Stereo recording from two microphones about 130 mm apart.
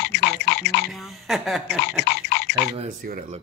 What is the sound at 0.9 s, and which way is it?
A woman's voice, centre (ahead or behind).